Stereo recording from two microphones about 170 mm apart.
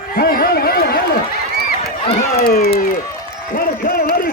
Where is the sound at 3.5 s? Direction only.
60° left (ahead or behind).